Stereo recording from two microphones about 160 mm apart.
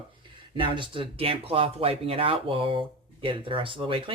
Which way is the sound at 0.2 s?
30° right (ahead or behind).